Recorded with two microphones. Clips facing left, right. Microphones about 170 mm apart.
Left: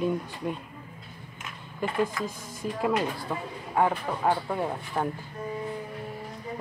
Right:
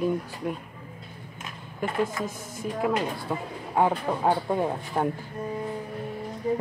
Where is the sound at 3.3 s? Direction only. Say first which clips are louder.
Right 2 dB; 15° right (ahead or behind).